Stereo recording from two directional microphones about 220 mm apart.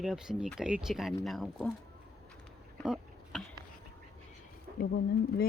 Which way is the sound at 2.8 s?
5° right (ahead or behind).